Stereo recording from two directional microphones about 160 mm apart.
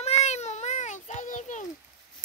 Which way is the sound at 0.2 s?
45° left (ahead or behind).